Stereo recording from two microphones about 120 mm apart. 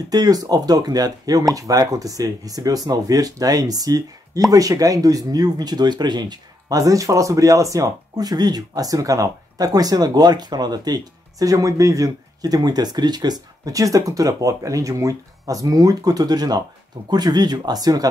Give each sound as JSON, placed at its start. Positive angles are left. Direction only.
{"t": 0.1, "sound": "speech", "side_deg": -30}